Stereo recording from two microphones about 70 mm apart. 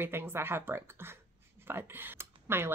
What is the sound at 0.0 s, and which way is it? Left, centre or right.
Speech, right.